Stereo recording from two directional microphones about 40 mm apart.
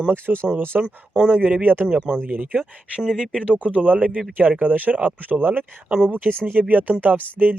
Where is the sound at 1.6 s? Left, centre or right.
Right.